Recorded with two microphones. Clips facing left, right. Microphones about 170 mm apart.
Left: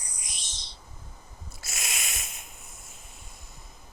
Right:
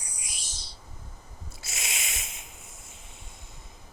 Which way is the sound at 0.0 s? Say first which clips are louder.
Even; 10° right (ahead or behind).